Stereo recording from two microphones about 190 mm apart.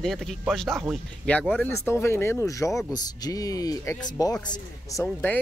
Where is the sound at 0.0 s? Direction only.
Centre (ahead or behind); by 5.0 s 20° left (ahead or behind).